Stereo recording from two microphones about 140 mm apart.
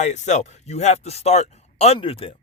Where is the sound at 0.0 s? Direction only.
55° left (ahead or behind).